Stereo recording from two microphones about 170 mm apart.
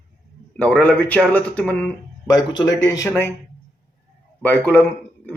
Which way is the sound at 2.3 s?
20° left (ahead or behind).